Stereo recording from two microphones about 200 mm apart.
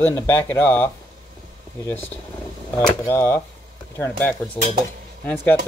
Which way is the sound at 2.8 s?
15° left (ahead or behind).